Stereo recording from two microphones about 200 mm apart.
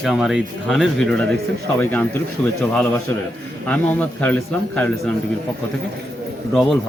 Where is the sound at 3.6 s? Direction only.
10° left (ahead or behind).